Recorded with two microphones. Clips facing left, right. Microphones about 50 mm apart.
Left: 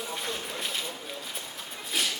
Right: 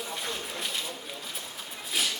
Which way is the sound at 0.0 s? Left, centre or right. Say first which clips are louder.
Left 1 dB; centre.